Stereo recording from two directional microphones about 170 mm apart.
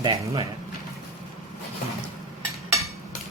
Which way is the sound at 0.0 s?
25° right (ahead or behind).